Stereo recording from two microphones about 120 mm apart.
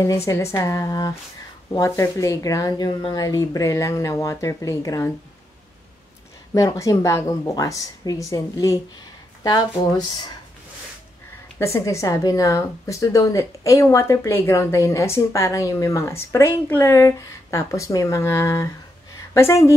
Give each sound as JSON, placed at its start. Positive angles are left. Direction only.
{"t": 0.0, "sound": "speech", "side_deg": 25}
{"t": 6.5, "sound": "speech", "side_deg": 30}
{"t": 11.5, "sound": "speech", "side_deg": 25}